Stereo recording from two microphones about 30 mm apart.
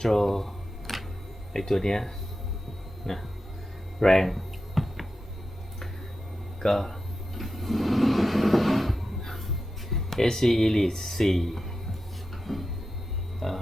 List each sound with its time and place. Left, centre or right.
0.0 s camera: centre
1.5 s speech: centre
3.1 s speech: centre
4.0 s a sound: centre
6.6 s speech: centre
7.3 s a sound: centre
12.5 s cupboard open or close: centre